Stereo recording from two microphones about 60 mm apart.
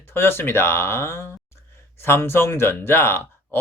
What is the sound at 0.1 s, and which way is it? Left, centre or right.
Speech, left.